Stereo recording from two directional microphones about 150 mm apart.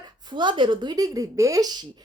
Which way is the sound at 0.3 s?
30° right (ahead or behind).